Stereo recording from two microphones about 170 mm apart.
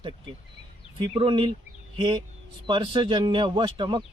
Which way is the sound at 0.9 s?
30° right (ahead or behind).